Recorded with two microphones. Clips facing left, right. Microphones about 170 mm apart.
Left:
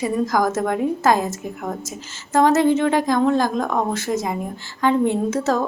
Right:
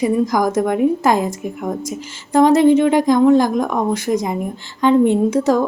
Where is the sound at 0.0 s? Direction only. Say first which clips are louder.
Right 4 dB; 15° right (ahead or behind).